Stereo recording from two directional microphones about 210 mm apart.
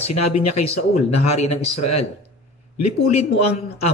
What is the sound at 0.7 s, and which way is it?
Speech, 30° left (ahead or behind).